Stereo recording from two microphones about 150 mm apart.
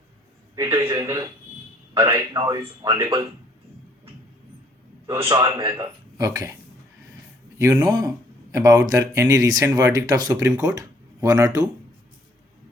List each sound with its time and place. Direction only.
0.5 s speech: 20° right (ahead or behind)
5.2 s a man's voice: 30° right (ahead or behind)
7.6 s speech: 20° right (ahead or behind)